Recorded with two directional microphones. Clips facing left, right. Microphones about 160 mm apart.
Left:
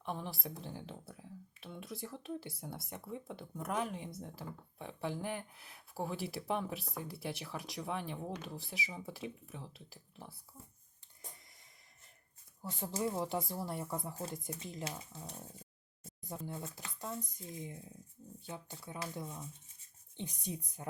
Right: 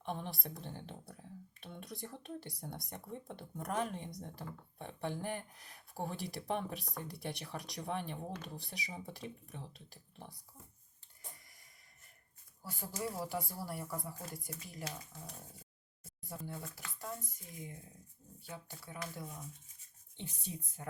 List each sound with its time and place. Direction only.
0.1 s speech: 5° left (ahead or behind)
12.6 s speech: 25° left (ahead or behind)
16.0 s a sound: 20° left (ahead or behind)
16.5 s speech: 20° left (ahead or behind)